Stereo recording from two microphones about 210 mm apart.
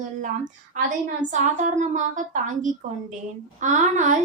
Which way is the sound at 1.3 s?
35° right (ahead or behind).